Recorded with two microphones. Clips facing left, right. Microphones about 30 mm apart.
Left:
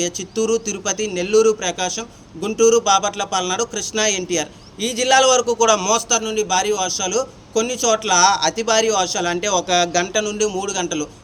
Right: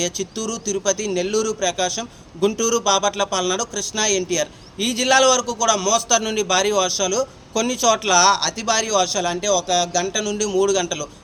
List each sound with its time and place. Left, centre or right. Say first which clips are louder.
0.3 s a man's voice: left 5 dB; centre
2.0 s a man's voice: right 6 dB; centre
4.8 s a man's voice: even; right
5.0 s speech: left 2 dB; centre
5.6 s a man's voice: even; centre
6.2 s a man's voice: even; right
7.0 s a man's voice: even; centre
9.2 s speech: left 1 dB; centre
10.2 s speech: right 2 dB; centre